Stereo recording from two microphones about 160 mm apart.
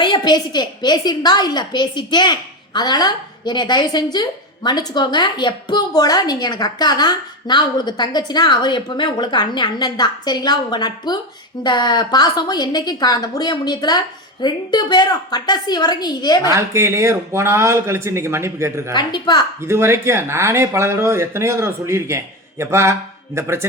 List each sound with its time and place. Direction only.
0.0 s a woman's voice: 30° left (ahead or behind)
16.5 s speech: 15° right (ahead or behind)
18.9 s a woman's voice: 25° left (ahead or behind)
19.6 s speech: 15° right (ahead or behind)